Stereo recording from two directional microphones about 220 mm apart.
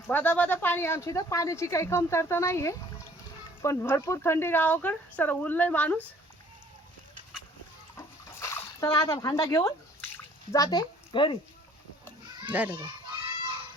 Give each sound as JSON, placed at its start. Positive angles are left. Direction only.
{"t": 0.1, "sound": "speech", "side_deg": 10}
{"t": 7.9, "sound": "bathtub", "side_deg": 15}
{"t": 10.5, "sound": "speech", "side_deg": 15}
{"t": 12.5, "sound": "a child's voice", "side_deg": -5}